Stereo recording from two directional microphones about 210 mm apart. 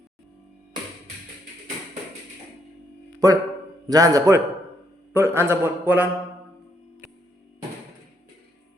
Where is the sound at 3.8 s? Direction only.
15° right (ahead or behind).